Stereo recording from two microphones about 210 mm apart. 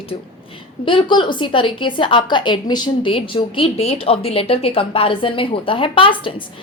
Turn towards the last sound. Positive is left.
turn(degrees=25)  # may be behind; listen again after turning